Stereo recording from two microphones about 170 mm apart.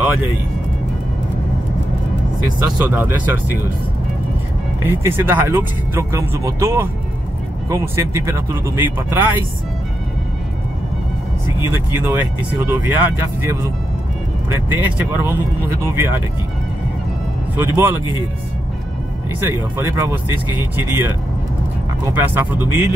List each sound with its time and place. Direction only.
2.6 s speech: 10° right (ahead or behind)
4.8 s speech: 15° right (ahead or behind)
11.7 s speech: 10° right (ahead or behind)
17.7 s speech: 15° right (ahead or behind)
19.4 s speech: 15° right (ahead or behind)
22.1 s speech: 10° right (ahead or behind)